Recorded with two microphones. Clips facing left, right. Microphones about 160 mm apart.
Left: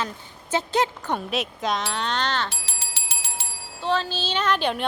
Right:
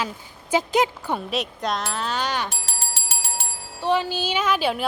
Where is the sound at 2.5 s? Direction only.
45° right (ahead or behind).